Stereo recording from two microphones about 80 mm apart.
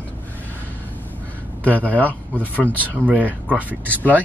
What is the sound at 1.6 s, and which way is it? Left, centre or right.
Speech, centre.